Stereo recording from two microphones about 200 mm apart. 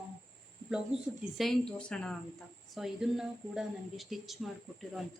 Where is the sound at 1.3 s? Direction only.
Centre (ahead or behind).